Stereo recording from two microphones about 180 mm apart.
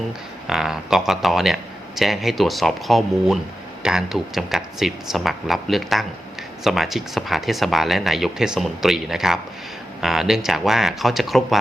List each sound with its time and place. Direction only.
0.4 s speech: 5° right (ahead or behind)